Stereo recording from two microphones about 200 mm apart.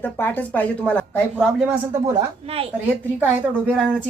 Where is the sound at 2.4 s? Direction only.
30° right (ahead or behind).